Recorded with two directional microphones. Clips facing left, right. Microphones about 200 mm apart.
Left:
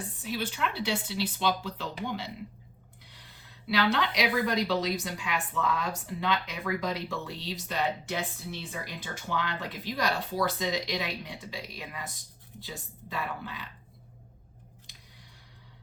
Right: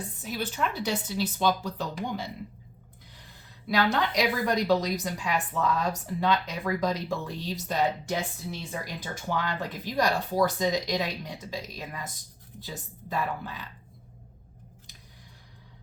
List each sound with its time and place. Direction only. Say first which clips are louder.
0.2 s speech: right 2 dB; 45° right (ahead or behind)
3.7 s a woman's voice: right 2 dB; 45° right (ahead or behind)